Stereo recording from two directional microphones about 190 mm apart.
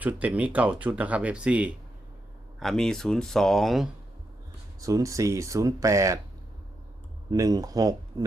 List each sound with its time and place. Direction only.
0.0 s speech: 10° right (ahead or behind)
4.8 s speech: 15° right (ahead or behind)
7.3 s speech: 20° right (ahead or behind)